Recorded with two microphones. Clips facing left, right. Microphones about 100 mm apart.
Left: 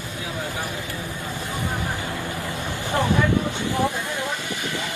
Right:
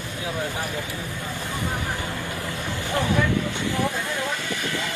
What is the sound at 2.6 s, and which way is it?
Vehicle, 15° left (ahead or behind).